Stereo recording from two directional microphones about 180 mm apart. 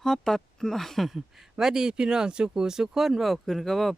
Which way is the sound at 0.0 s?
Centre (ahead or behind).